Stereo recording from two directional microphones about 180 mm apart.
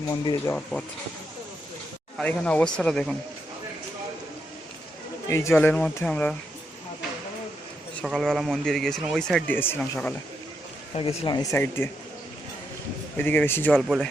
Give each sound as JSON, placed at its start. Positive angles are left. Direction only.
{"t": 0.1, "sound": "speech", "side_deg": 20}
{"t": 0.5, "sound": "speech", "side_deg": 5}
{"t": 2.1, "sound": "speech", "side_deg": 5}
{"t": 5.3, "sound": "speech", "side_deg": 15}
{"t": 7.9, "sound": "speech", "side_deg": 0}
{"t": 10.9, "sound": "speech", "side_deg": 30}
{"t": 11.5, "sound": "speech", "side_deg": 15}
{"t": 13.1, "sound": "speech", "side_deg": 10}
{"t": 13.8, "sound": "speech", "side_deg": -5}